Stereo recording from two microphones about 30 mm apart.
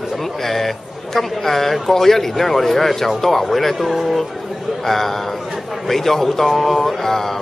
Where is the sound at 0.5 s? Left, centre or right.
Centre.